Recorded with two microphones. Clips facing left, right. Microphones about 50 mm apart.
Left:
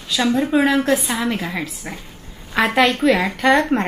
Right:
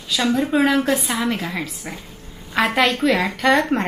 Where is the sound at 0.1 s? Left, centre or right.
Centre.